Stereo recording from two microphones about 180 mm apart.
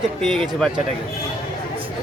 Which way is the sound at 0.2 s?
Centre (ahead or behind).